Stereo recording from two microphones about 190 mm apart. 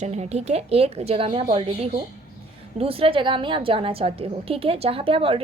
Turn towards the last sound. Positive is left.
turn(degrees=-30)  # may be behind; listen again after turning